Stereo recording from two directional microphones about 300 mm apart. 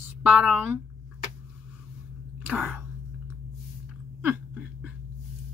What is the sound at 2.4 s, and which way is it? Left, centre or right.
Throat clearing, centre.